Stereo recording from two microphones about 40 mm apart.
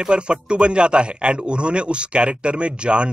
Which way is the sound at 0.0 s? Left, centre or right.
Right.